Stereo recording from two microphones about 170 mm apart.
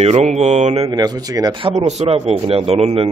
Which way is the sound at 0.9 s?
25° right (ahead or behind).